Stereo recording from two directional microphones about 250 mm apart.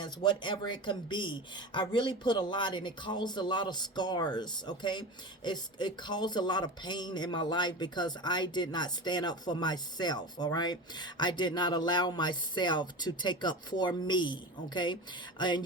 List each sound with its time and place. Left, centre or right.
0.0 s speech: centre